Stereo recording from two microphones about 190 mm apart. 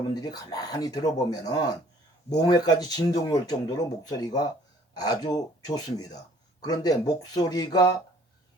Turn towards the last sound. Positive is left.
turn(degrees=20)  # may be behind; listen again after turning